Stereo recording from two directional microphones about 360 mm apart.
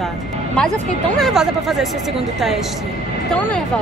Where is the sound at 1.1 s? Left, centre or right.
Centre.